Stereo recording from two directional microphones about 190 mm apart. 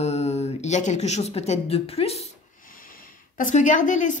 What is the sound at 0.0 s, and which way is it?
Speech, 35° left (ahead or behind).